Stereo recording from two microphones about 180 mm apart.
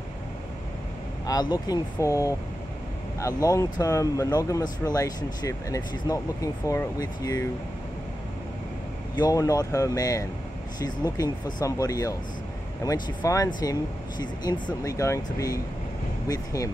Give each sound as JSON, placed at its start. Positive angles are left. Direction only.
{"t": 1.2, "sound": "speech", "side_deg": 20}
{"t": 9.1, "sound": "speech", "side_deg": 20}